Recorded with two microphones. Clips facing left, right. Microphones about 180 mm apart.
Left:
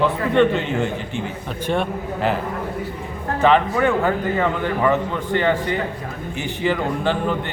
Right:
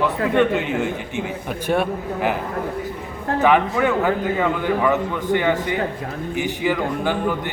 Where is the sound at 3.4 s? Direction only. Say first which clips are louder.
Left 1 dB; 10° right (ahead or behind).